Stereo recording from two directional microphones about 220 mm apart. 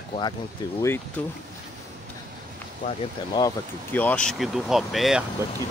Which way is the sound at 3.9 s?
5° left (ahead or behind).